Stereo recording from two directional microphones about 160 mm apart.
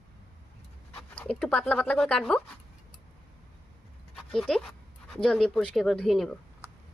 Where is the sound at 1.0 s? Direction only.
5° left (ahead or behind).